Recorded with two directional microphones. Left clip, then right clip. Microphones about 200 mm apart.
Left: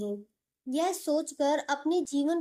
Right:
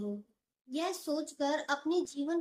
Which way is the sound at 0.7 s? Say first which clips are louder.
Left 7 dB; 50° left (ahead or behind).